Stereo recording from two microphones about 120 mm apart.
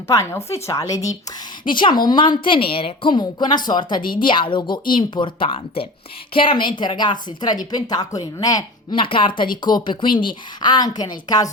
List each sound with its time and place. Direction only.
0.1 s a woman's voice: 25° left (ahead or behind)
1.6 s a woman's voice: 40° left (ahead or behind)
9.0 s a woman's voice: 45° left (ahead or behind)